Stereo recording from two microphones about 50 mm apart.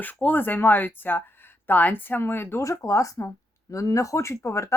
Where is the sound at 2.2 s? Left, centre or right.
Left.